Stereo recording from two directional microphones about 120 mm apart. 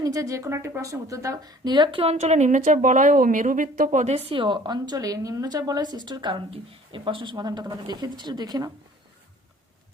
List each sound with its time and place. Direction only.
0.0 s a woman's voice: 30° right (ahead or behind); by 2.1 s 50° right (ahead or behind)
2.1 s a woman's voice: 75° right (ahead or behind); by 8.7 s 35° right (ahead or behind)